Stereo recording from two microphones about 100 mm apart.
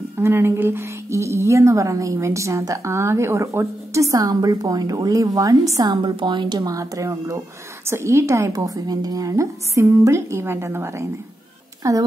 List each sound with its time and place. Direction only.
0.2 s a woman's voice: 25° right (ahead or behind)
5.9 s a woman's voice: 55° right (ahead or behind)
6.6 s a woman's voice: 35° right (ahead or behind)